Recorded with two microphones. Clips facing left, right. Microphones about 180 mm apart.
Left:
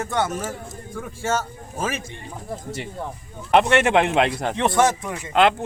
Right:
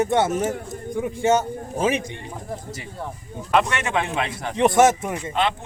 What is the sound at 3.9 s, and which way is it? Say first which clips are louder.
Speech: left 6 dB; 75° left (ahead or behind).